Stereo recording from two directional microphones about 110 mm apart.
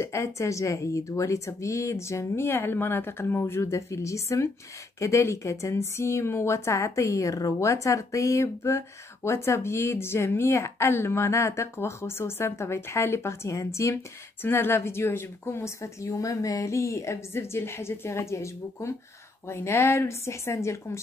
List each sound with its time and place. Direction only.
0.0 s a woman's voice: 25° left (ahead or behind)